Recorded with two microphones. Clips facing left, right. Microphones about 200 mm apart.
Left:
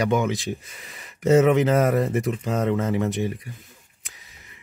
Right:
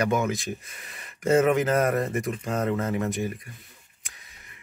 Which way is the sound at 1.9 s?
Centre (ahead or behind).